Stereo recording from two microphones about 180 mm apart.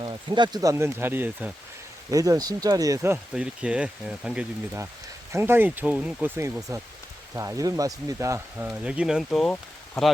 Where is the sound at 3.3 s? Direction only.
5° right (ahead or behind).